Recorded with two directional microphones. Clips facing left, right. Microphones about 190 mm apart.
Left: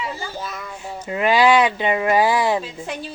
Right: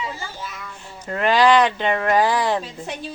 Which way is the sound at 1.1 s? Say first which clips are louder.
Even; 10° left (ahead or behind).